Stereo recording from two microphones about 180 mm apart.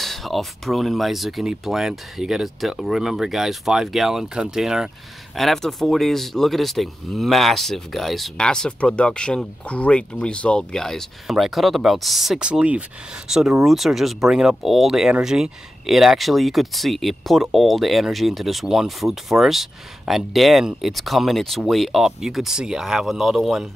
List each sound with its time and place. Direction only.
0.0 s speech: centre (ahead or behind)